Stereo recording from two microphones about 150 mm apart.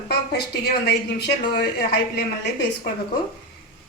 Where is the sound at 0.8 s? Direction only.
90° left.